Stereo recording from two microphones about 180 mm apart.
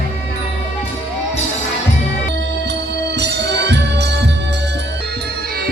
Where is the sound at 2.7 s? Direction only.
70° right (ahead or behind).